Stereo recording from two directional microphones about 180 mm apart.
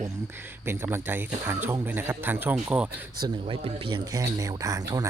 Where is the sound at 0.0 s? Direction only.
15° right (ahead or behind).